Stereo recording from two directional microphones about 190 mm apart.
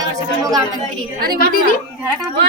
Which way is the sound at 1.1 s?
55° right (ahead or behind).